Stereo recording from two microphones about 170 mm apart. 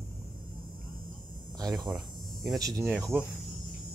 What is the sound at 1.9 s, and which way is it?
Hum, centre (ahead or behind).